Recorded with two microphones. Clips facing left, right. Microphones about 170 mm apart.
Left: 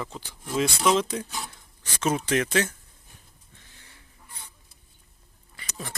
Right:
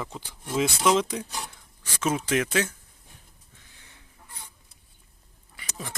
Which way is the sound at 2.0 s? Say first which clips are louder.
Left 1 dB; 5° right (ahead or behind).